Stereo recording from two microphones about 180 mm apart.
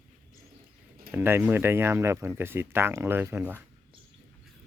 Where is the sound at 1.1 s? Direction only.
10° right (ahead or behind).